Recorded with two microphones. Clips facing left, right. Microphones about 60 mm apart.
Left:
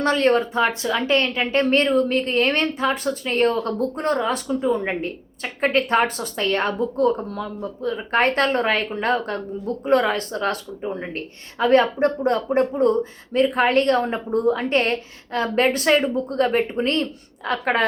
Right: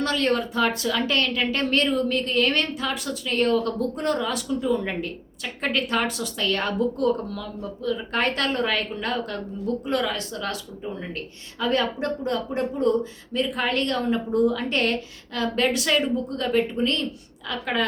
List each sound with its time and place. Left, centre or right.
0.0 s speech: left